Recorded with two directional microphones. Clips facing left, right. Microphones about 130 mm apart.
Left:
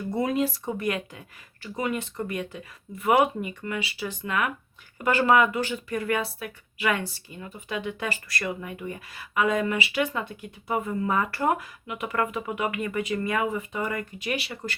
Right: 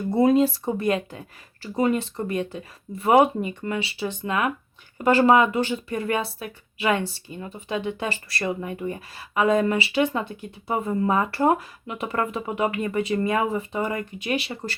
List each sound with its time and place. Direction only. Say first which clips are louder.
0.1 s speech: right 7 dB; 30° right (ahead or behind)